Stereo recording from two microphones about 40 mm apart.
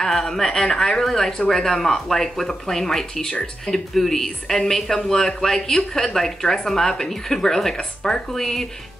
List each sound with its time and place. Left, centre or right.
0.0 s speech: centre
7.7 s speech: left
8.3 s speech: centre